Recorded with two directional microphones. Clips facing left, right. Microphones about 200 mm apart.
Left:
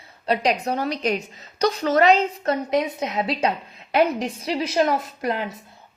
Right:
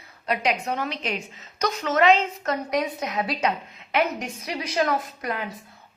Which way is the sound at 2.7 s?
25° left (ahead or behind).